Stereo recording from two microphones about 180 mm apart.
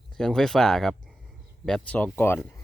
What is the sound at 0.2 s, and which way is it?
Speech, centre (ahead or behind).